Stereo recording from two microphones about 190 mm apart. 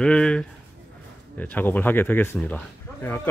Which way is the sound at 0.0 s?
5° left (ahead or behind).